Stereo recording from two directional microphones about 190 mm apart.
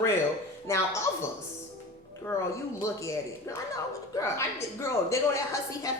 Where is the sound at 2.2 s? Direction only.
15° left (ahead or behind).